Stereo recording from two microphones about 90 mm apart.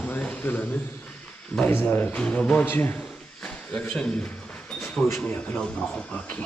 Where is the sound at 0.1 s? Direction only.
15° left (ahead or behind).